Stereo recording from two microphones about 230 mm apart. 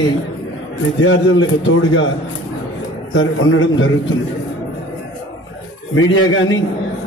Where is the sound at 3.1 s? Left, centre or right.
Left.